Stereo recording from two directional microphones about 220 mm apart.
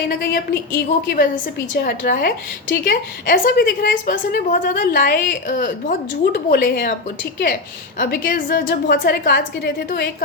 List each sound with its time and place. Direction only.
0.7 s a woman's voice: 45° left (ahead or behind)
7.9 s a woman's voice: 40° left (ahead or behind)